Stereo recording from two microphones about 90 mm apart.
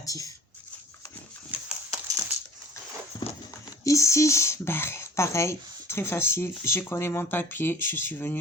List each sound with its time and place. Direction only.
0.0 s speech: 40° left (ahead or behind)
1.9 s crushing: 40° right (ahead or behind)
3.1 s clip-clop: 45° left (ahead or behind)
3.8 s speech: 35° left (ahead or behind)